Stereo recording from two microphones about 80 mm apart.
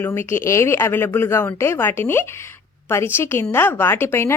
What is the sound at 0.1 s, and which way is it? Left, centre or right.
Speech, left.